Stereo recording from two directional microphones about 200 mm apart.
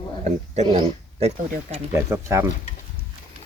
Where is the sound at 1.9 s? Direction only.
15° right (ahead or behind).